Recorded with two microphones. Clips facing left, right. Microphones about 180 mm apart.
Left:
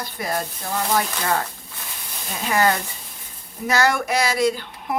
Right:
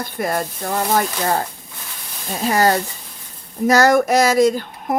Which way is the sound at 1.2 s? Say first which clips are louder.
Right 3 dB; 35° right (ahead or behind).